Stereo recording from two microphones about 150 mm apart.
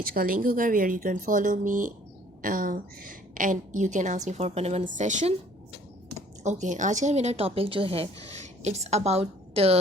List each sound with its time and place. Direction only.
0.0 s a woman's voice: 75° right (ahead or behind); by 5.3 s 55° right (ahead or behind)
6.4 s speech: 55° right (ahead or behind)